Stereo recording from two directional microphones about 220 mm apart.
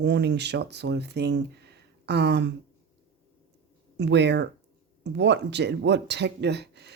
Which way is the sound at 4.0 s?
50° right (ahead or behind).